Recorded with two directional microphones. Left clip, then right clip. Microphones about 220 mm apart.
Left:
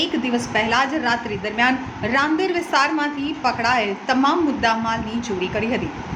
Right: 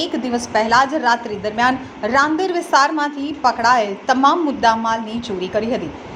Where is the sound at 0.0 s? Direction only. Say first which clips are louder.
Even; 15° right (ahead or behind).